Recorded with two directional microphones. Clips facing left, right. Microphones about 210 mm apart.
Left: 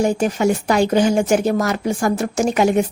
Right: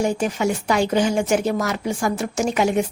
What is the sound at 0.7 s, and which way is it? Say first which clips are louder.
A woman's voice: left 3 dB; 45° left (ahead or behind).